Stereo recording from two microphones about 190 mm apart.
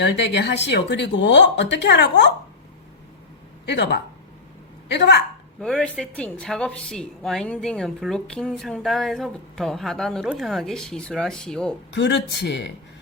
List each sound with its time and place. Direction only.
0.0 s speech: 65° left (ahead or behind)
3.7 s speech: 65° left (ahead or behind)
5.5 s speech: 5° left (ahead or behind)
11.9 s speech: 65° left (ahead or behind)